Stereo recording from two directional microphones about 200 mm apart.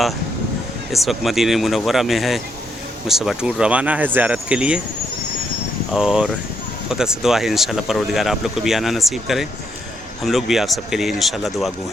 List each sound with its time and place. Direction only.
0.9 s speech: centre (ahead or behind)
5.9 s speech: 5° right (ahead or behind)